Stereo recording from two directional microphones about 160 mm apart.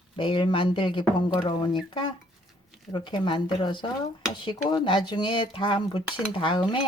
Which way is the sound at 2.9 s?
30° left (ahead or behind).